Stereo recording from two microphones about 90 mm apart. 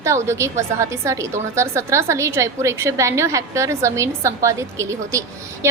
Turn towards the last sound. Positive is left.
turn(degrees=-35)  # may be behind; listen again after turning